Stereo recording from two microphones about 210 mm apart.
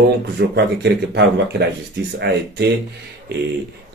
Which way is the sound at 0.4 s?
50° right (ahead or behind).